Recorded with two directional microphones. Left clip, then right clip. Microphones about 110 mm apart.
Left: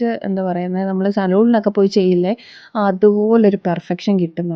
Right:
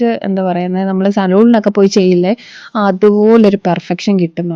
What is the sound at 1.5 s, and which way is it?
A woman's voice, 40° right (ahead or behind).